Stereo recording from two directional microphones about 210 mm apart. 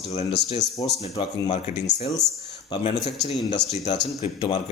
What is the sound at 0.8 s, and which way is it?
Speech, 25° left (ahead or behind).